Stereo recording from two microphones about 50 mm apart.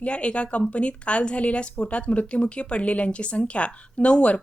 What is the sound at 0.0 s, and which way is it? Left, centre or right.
Speech, left.